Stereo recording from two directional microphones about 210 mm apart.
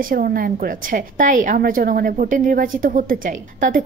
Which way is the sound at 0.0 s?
45° right (ahead or behind).